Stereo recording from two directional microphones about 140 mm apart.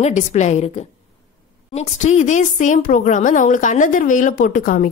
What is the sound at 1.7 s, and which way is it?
A woman's voice, 55° left (ahead or behind).